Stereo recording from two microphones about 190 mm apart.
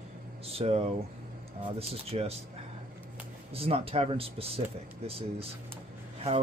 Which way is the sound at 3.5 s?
30° right (ahead or behind).